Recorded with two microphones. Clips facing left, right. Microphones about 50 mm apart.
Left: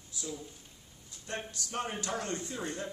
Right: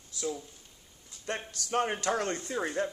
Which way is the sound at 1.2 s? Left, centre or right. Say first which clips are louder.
Right 3 dB; right.